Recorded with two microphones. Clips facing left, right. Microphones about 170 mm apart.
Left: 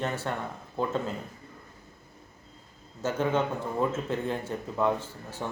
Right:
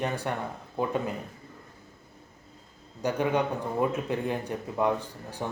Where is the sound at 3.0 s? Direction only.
15° right (ahead or behind).